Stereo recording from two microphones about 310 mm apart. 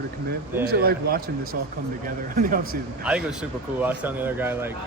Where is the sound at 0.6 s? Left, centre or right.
Right.